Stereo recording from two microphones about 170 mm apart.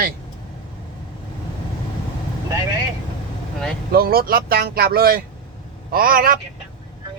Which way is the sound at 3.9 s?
60° right (ahead or behind).